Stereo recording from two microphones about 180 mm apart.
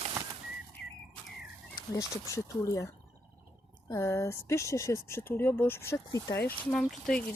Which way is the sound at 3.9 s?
15° left (ahead or behind).